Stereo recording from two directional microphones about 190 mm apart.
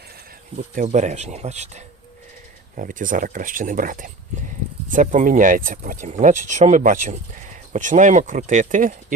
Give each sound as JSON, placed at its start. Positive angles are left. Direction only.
{"t": 0.5, "sound": "speech", "side_deg": -40}